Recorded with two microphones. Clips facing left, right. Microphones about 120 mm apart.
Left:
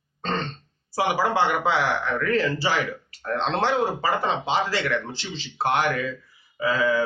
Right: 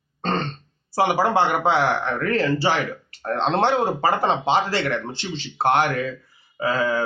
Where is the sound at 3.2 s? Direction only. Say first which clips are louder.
Right 4 dB; 50° right (ahead or behind).